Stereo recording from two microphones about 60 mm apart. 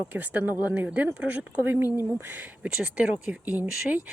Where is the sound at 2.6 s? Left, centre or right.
Right.